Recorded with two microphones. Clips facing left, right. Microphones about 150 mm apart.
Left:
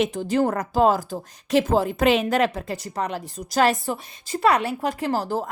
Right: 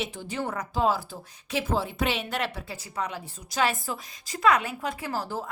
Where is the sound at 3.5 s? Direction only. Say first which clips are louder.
Left 7 dB; 40° left (ahead or behind).